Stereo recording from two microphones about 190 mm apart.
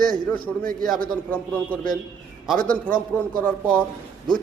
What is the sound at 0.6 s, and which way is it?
Speech, 45° right (ahead or behind).